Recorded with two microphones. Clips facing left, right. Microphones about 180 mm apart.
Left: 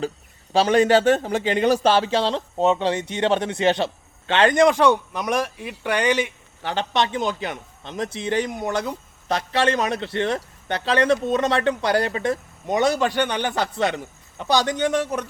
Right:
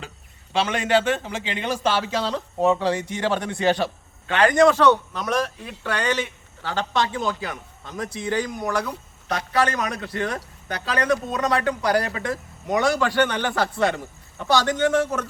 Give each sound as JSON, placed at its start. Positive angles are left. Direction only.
{"t": 0.5, "sound": "a man's voice", "side_deg": 35}